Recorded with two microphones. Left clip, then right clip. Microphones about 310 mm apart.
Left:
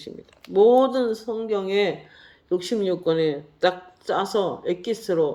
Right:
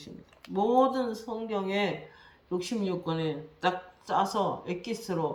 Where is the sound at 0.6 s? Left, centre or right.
Right.